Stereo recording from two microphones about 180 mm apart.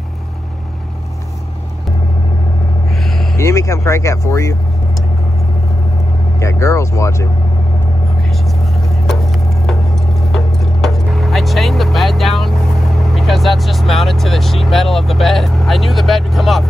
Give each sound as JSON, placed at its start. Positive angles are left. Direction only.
{"t": 3.0, "sound": "vehicle", "side_deg": 0}
{"t": 3.3, "sound": "speech", "side_deg": 15}
{"t": 6.4, "sound": "speech", "side_deg": 15}
{"t": 8.4, "sound": "vehicle", "side_deg": 0}
{"t": 10.2, "sound": "speech", "side_deg": 0}